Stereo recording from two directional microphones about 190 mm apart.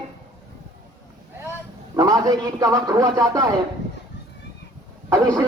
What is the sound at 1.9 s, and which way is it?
A man's voice, 15° right (ahead or behind).